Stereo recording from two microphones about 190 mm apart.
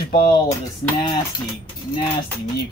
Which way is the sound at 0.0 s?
50° left (ahead or behind).